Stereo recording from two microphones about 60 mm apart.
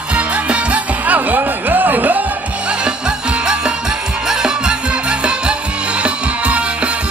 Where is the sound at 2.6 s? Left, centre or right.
Centre.